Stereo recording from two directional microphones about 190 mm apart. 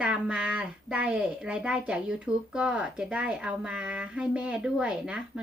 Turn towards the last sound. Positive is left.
turn(degrees=-5)  # may be behind; listen again after turning